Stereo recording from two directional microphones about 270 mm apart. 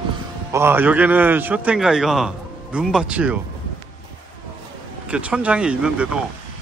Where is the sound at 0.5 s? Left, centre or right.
Centre.